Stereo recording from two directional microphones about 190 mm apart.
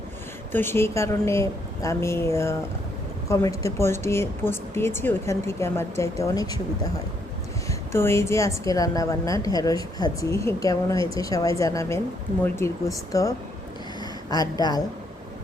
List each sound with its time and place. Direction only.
0.5 s a woman's voice: 10° left (ahead or behind)